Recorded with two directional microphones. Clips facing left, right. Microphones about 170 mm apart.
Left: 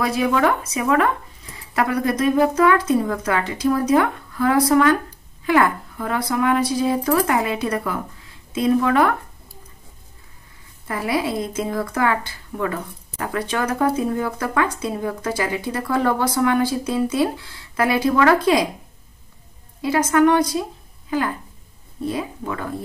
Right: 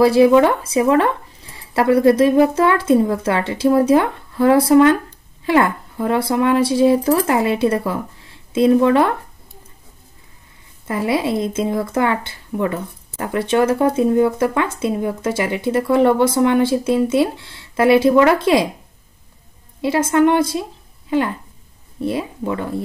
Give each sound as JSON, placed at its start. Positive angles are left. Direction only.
{"t": 0.0, "sound": "speech", "side_deg": -30}
{"t": 10.9, "sound": "speech", "side_deg": -25}
{"t": 19.8, "sound": "speech", "side_deg": -25}
{"t": 22.0, "sound": "speech", "side_deg": -25}